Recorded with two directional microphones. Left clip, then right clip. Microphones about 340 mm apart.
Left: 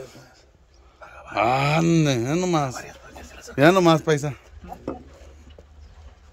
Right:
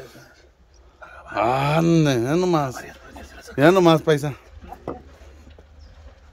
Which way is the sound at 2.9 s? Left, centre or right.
Left.